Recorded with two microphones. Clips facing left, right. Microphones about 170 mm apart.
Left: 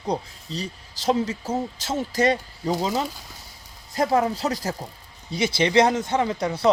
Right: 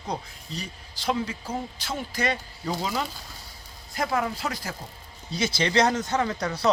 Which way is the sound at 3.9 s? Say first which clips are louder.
Left 6 dB; 35° left (ahead or behind).